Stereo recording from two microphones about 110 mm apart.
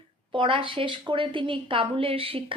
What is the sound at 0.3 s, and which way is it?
A woman's voice, 50° right (ahead or behind).